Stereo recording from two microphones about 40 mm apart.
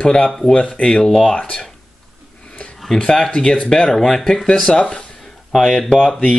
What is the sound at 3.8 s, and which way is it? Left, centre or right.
Speech, centre.